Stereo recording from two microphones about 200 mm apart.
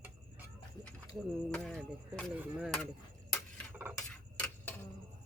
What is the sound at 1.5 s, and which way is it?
Speech, centre (ahead or behind).